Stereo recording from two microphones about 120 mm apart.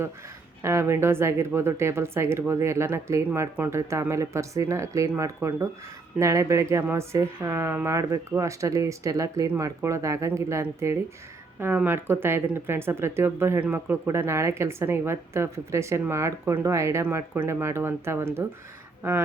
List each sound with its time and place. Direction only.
0.6 s speech: 25° right (ahead or behind)